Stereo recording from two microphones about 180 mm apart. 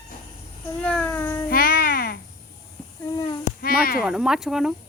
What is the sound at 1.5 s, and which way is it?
Music, 55° left (ahead or behind).